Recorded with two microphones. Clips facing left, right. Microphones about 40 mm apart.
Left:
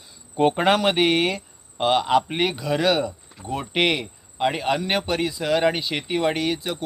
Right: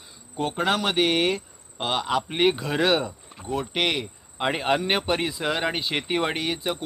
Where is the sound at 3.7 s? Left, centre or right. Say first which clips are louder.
Left 5 dB; centre.